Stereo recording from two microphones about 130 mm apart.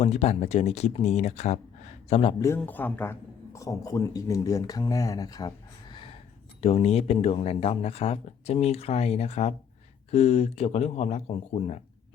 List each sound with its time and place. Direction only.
0.0 s speech: 55° left (ahead or behind)
2.6 s speech: 15° left (ahead or behind); by 6.1 s 40° left (ahead or behind)
6.6 s speech: 50° left (ahead or behind)